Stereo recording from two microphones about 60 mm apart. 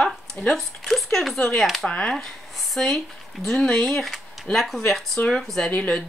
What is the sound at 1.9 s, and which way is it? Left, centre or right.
Speech, centre.